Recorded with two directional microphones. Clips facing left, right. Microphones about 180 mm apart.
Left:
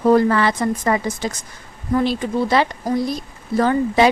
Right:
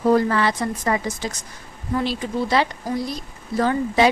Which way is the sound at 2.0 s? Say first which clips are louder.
Left 3 dB; 50° left (ahead or behind).